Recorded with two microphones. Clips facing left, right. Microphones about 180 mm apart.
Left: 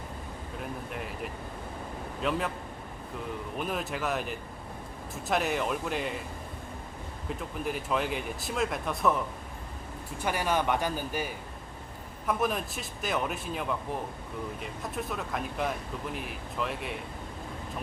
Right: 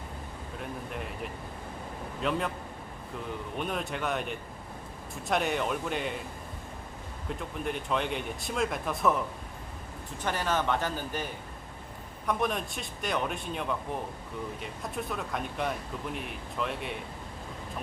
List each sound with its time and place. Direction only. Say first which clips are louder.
0.6 s speech: even; centre (ahead or behind)
3.6 s speech: even; centre (ahead or behind)
7.3 s speech: even; centre (ahead or behind)
10.2 s a man's voice: left 1 dB; 10° left (ahead or behind)